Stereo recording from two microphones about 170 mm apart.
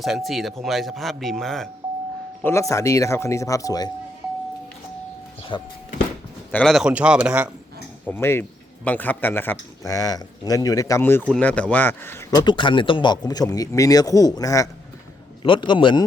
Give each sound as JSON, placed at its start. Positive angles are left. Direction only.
{"t": 0.0, "sound": "speech", "side_deg": 0}
{"t": 2.4, "sound": "speech", "side_deg": 15}
{"t": 5.4, "sound": "a sound", "side_deg": 30}
{"t": 6.5, "sound": "speech", "side_deg": 5}
{"t": 8.0, "sound": "speech", "side_deg": 15}